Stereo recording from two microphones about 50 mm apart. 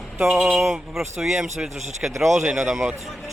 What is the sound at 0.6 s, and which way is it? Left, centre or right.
Speech, centre.